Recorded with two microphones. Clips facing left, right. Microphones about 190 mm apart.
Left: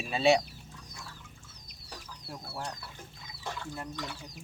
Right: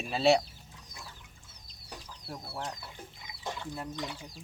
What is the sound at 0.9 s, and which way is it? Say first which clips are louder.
Pour: right 1 dB; 20° right (ahead or behind).